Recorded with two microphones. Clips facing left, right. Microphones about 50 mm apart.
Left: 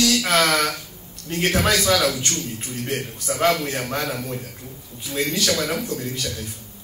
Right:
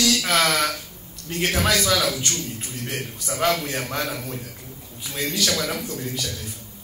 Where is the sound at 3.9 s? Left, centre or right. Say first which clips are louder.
Left 2 dB; left.